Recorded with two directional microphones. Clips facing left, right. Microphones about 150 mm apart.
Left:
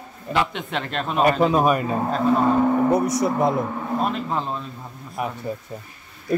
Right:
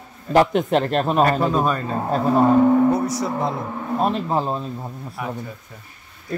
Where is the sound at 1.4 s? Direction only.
10° left (ahead or behind).